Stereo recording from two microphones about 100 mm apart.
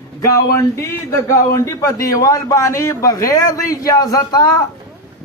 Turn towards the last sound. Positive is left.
turn(degrees=40)  # may be behind; listen again after turning